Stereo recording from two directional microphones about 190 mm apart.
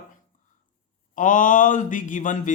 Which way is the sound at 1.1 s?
45° left (ahead or behind).